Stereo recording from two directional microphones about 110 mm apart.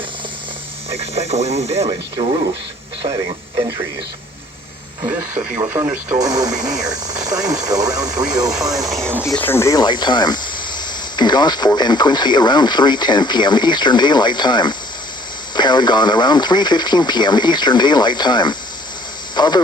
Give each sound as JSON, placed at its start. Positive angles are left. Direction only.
{"t": 0.9, "sound": "speech", "side_deg": -70}
{"t": 5.0, "sound": "speech", "side_deg": -20}
{"t": 6.1, "sound": "speech", "side_deg": -35}
{"t": 9.4, "sound": "speech", "side_deg": 20}
{"t": 9.7, "sound": "speech", "side_deg": 45}